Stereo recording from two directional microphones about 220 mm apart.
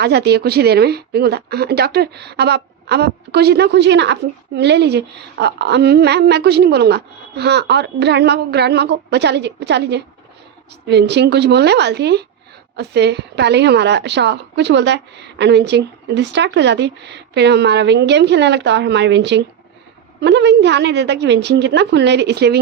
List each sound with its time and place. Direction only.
0.0 s a woman's voice: 50° right (ahead or behind)